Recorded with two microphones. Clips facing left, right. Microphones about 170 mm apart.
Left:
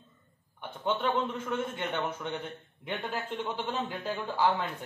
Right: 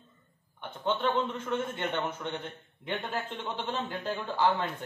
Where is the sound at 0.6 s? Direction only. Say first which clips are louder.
Even; 10° left (ahead or behind).